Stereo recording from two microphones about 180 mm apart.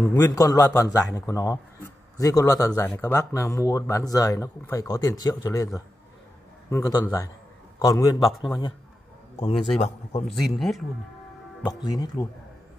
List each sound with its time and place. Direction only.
0.2 s speech: 20° left (ahead or behind)
8.3 s speech: centre (ahead or behind)
9.4 s speech: 35° left (ahead or behind)
10.2 s speech: centre (ahead or behind)
11.8 s speech: 20° left (ahead or behind)